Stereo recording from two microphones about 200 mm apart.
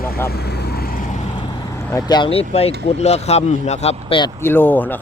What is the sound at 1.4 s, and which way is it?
Vehicle, 20° left (ahead or behind).